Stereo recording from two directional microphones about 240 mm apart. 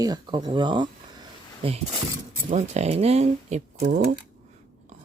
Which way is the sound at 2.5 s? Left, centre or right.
Right.